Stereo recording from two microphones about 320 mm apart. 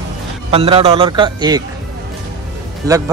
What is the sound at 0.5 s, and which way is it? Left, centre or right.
Speech, centre.